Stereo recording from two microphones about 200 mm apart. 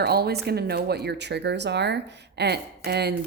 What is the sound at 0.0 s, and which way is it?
A woman's voice, 50° right (ahead or behind).